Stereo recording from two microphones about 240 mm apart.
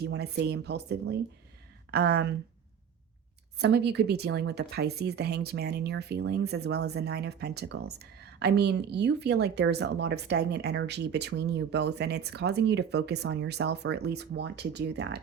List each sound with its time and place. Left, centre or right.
0.0 s speech: right
3.6 s speech: right